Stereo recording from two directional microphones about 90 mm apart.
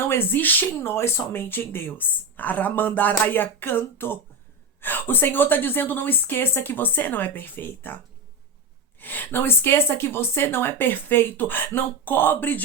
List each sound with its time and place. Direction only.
0.0 s speech: 25° left (ahead or behind)
9.0 s speech: 20° left (ahead or behind)